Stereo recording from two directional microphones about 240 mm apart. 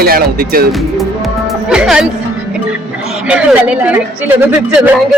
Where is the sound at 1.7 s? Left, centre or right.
Centre.